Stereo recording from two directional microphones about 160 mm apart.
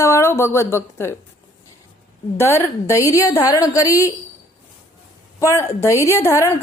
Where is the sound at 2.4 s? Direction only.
15° left (ahead or behind).